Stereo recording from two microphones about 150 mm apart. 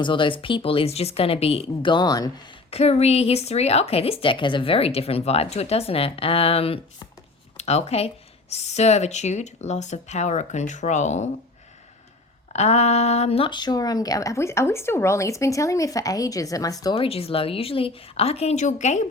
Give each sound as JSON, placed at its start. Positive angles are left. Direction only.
{"t": 0.0, "sound": "a woman's voice", "side_deg": 35}
{"t": 2.6, "sound": "a woman's voice", "side_deg": 45}
{"t": 12.5, "sound": "speech", "side_deg": 50}
{"t": 16.9, "sound": "a woman's voice", "side_deg": 40}